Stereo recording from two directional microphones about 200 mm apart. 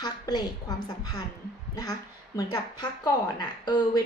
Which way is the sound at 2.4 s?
20° left (ahead or behind).